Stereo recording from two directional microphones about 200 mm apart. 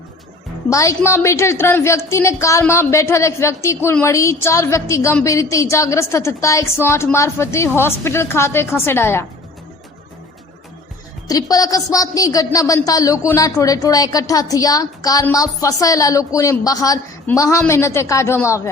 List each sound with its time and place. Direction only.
0.7 s a woman's voice: 15° left (ahead or behind)
11.3 s a woman's voice: 20° left (ahead or behind)